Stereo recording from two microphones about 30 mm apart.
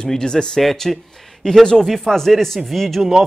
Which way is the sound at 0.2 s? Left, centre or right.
Left.